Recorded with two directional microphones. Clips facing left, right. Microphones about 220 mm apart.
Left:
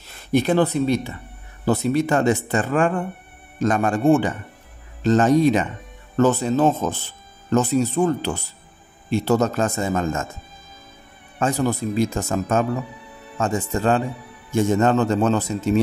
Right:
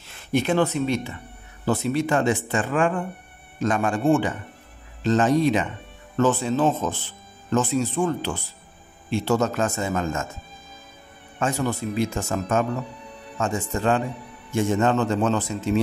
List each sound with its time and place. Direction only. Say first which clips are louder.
0.0 s speech: left 4 dB; 40° left (ahead or behind)
11.3 s speech: left 3 dB; 35° left (ahead or behind)